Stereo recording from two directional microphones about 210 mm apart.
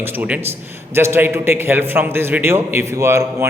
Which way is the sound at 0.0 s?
10° right (ahead or behind).